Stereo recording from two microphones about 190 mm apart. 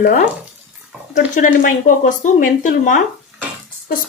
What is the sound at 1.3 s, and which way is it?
Speech, 45° left (ahead or behind).